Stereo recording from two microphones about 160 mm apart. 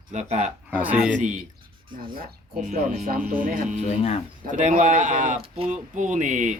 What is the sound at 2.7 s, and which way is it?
Speech, 50° right (ahead or behind).